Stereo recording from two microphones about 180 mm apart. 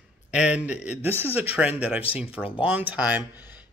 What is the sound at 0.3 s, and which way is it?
A man's voice, 5° right (ahead or behind).